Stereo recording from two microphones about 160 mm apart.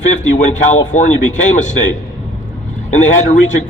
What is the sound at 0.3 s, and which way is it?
Speech, 50° left (ahead or behind).